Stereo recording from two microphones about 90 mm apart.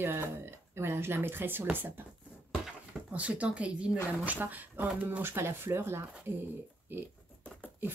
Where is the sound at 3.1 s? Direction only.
15° right (ahead or behind).